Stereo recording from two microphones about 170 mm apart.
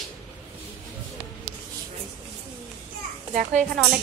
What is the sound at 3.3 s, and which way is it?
Speech, 45° right (ahead or behind).